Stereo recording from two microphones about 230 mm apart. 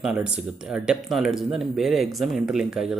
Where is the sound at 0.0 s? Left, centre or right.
Centre.